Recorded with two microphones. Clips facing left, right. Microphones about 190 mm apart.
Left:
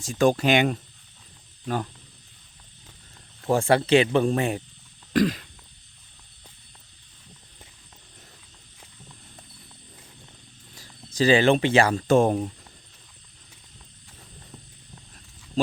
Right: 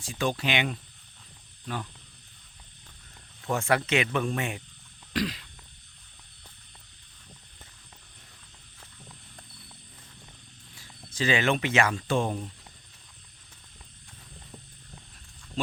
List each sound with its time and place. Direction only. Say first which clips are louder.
0.0 s speech: left 9 dB; 45° left (ahead or behind)
3.5 s speech: left 7 dB; 30° left (ahead or behind)
5.1 s speech: left 8 dB; 50° left (ahead or behind)
10.8 s speech: left 8 dB; 40° left (ahead or behind)
15.6 s speech: left 8 dB; 40° left (ahead or behind)